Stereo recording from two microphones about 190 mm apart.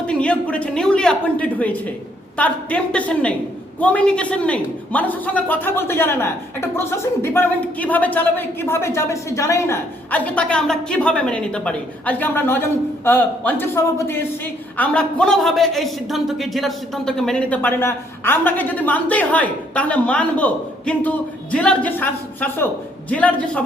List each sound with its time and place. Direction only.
0.1 s a man's voice: 5° left (ahead or behind)